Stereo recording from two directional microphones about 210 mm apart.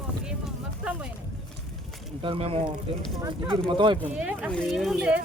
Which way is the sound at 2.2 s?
25° right (ahead or behind).